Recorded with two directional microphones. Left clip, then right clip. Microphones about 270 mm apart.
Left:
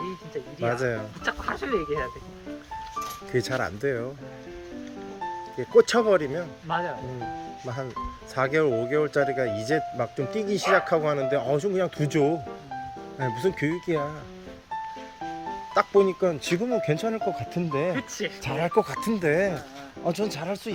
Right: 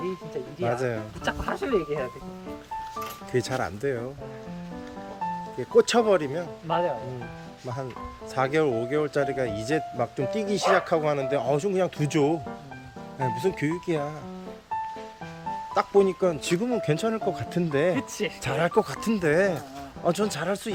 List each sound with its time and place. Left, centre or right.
1.2 s speech: right
3.3 s speech: centre
5.7 s speech: centre
6.7 s speech: right
8.4 s speech: centre
15.7 s speech: centre